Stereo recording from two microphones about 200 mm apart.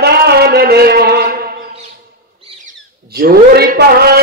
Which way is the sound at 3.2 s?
50° right (ahead or behind).